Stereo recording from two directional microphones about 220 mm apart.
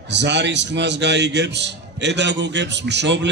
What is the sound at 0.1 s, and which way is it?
A man's voice, 50° right (ahead or behind).